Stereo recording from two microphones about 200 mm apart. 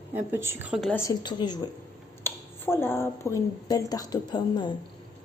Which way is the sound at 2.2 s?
10° left (ahead or behind).